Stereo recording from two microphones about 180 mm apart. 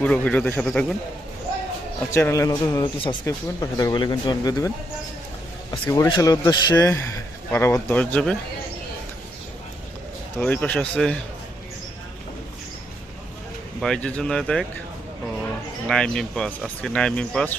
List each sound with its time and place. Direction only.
0.0 s a man's voice: 5° left (ahead or behind)
2.1 s a man's voice: 15° left (ahead or behind)
5.9 s a man's voice: 20° left (ahead or behind)
10.3 s a man's voice: 10° left (ahead or behind)
13.8 s speech: 5° left (ahead or behind)
15.9 s speech: 5° left (ahead or behind)